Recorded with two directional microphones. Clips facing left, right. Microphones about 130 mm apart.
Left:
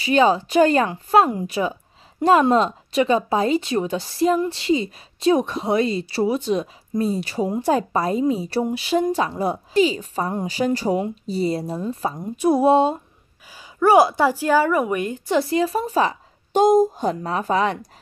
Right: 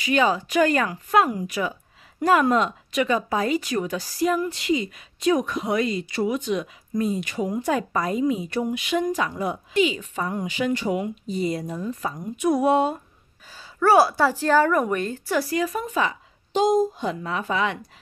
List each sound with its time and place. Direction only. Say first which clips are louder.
0.0 s speech: left 4 dB; 30° left (ahead or behind)
13.6 s a woman's voice: left 3 dB; 15° left (ahead or behind); by 16.2 s 35° left (ahead or behind)
16.5 s a woman's voice: left 4 dB; 45° left (ahead or behind)